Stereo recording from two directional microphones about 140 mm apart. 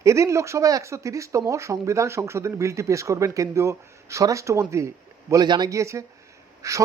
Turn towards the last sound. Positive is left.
turn(degrees=-25)  # may be behind; listen again after turning